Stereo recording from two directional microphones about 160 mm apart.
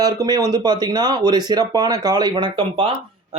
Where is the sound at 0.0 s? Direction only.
25° right (ahead or behind).